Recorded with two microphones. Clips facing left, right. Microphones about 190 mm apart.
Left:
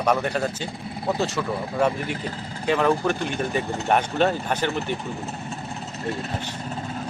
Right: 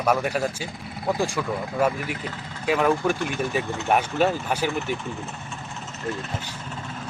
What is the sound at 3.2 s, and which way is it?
Speech, 35° left (ahead or behind).